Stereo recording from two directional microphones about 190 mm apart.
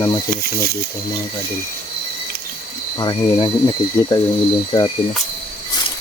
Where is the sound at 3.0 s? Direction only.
25° left (ahead or behind).